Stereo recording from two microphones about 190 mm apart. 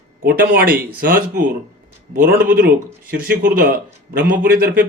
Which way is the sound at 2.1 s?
45° right (ahead or behind).